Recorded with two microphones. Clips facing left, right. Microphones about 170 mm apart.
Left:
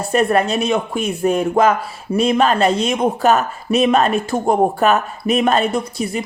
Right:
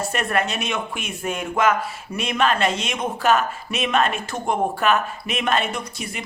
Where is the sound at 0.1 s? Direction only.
35° left (ahead or behind).